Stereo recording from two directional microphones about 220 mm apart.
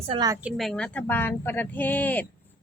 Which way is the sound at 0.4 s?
Centre (ahead or behind).